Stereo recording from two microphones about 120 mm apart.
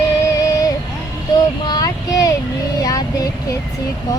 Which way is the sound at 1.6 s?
35° left (ahead or behind).